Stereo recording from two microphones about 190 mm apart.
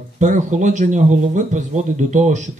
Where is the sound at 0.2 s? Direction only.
40° right (ahead or behind).